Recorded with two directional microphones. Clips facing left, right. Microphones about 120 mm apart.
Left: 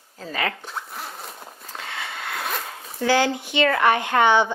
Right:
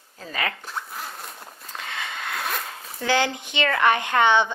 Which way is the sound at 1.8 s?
20° left (ahead or behind).